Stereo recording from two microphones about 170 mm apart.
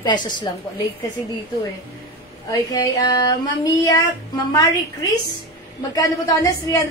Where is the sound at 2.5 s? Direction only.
20° left (ahead or behind).